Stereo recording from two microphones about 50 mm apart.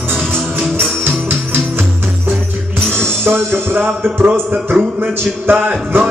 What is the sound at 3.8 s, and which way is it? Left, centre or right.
Music, right.